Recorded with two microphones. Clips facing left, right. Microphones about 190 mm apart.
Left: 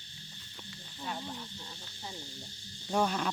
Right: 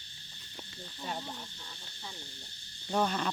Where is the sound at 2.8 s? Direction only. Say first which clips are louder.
Even; 5° left (ahead or behind).